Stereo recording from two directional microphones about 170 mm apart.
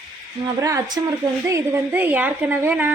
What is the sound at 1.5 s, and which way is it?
Speech, 15° right (ahead or behind).